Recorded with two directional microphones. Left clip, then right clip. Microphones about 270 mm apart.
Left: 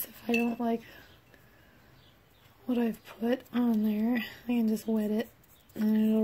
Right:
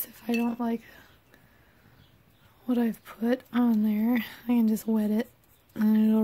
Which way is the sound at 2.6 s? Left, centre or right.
Right.